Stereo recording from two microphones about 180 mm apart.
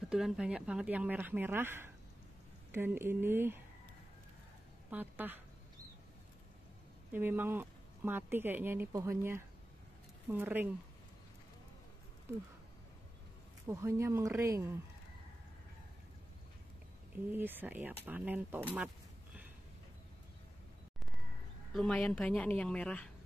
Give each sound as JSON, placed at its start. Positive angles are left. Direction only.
{"t": 0.1, "sound": "speech", "side_deg": -5}
{"t": 4.9, "sound": "speech", "side_deg": -10}
{"t": 7.1, "sound": "speech", "side_deg": -10}
{"t": 13.7, "sound": "speech", "side_deg": -15}
{"t": 17.3, "sound": "speech", "side_deg": -10}
{"t": 21.7, "sound": "a woman's voice", "side_deg": 5}